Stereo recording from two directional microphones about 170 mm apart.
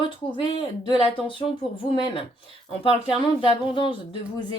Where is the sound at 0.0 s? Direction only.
30° left (ahead or behind).